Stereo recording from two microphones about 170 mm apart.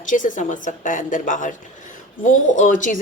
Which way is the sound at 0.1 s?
50° left (ahead or behind).